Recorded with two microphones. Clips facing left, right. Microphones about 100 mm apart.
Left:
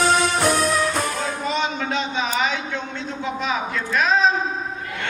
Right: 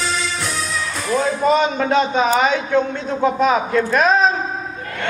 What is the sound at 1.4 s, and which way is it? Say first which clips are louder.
A man's voice: right 7 dB; 45° right (ahead or behind).